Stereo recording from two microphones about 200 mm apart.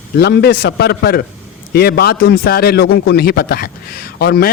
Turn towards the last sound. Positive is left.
turn(degrees=50)  # may be behind; listen again after turning